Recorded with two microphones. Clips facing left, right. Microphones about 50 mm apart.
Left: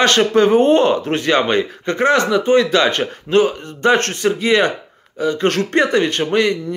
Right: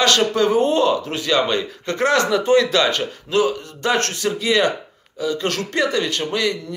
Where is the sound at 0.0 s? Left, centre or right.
Left.